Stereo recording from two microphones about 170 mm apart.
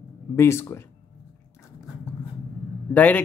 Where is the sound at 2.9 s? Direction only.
10° left (ahead or behind).